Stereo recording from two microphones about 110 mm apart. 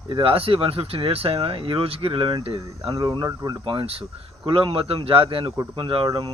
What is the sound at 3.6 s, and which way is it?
Speech, 55° right (ahead or behind).